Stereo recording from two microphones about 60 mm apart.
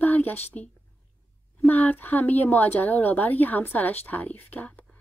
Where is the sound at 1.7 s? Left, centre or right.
Left.